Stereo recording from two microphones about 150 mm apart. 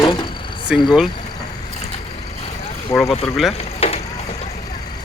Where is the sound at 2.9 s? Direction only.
20° left (ahead or behind).